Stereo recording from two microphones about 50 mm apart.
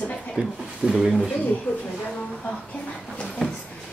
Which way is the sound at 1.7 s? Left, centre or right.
Left.